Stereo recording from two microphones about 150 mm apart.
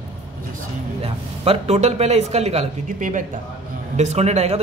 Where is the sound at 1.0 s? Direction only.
40° right (ahead or behind).